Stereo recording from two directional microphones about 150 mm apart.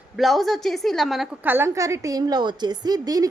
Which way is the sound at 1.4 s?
15° right (ahead or behind).